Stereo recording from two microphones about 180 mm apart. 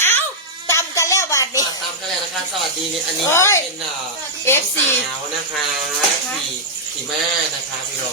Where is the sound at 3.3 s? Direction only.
15° left (ahead or behind).